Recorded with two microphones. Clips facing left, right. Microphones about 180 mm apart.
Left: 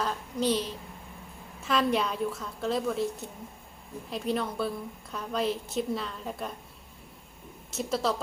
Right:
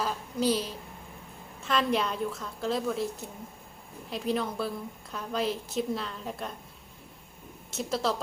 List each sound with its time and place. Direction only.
0.0 s a sound: 5° right (ahead or behind)
1.6 s a woman's voice: centre (ahead or behind)
4.1 s a woman's voice: centre (ahead or behind)
7.7 s a woman's voice: centre (ahead or behind)